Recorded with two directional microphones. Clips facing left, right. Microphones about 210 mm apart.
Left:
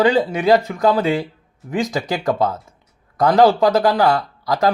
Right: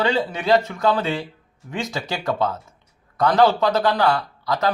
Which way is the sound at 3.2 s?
40° left (ahead or behind).